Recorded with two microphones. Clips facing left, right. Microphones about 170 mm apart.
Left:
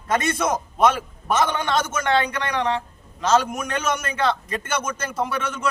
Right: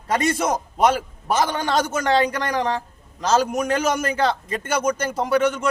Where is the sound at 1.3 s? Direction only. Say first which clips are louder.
Right 1 dB; 35° right (ahead or behind).